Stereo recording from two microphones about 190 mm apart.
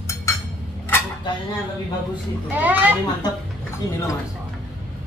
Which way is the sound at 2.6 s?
10° right (ahead or behind).